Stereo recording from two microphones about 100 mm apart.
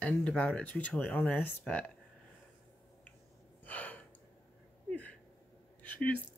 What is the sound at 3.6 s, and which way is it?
Gasp, 15° left (ahead or behind).